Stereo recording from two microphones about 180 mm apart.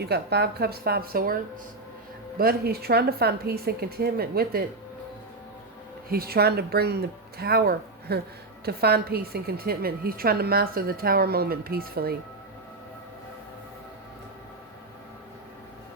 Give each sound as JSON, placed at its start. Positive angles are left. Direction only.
{"t": 0.0, "sound": "a woman's voice", "side_deg": -65}
{"t": 2.4, "sound": "a woman's voice", "side_deg": -60}
{"t": 6.1, "sound": "a woman's voice", "side_deg": -55}